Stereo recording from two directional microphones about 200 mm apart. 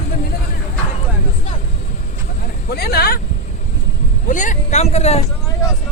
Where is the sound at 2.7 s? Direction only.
50° left (ahead or behind).